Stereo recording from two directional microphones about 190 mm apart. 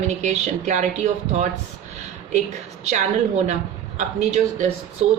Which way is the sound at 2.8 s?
35° right (ahead or behind).